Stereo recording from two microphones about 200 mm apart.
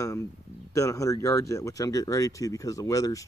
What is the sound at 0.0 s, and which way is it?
Speech, 15° left (ahead or behind).